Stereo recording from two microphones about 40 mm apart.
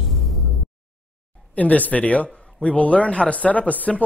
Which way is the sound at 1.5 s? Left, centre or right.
Left.